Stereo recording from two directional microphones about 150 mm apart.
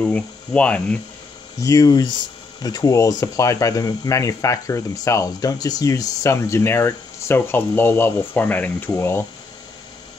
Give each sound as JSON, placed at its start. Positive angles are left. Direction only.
{"t": 0.0, "sound": "speech", "side_deg": 10}
{"t": 1.6, "sound": "speech", "side_deg": 20}